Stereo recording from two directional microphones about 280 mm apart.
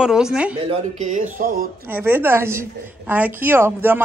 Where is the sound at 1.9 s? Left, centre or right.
Centre.